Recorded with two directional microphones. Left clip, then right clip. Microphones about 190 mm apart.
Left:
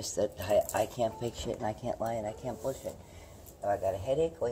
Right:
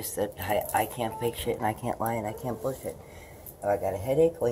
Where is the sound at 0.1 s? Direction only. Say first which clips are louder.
Even; 30° left (ahead or behind).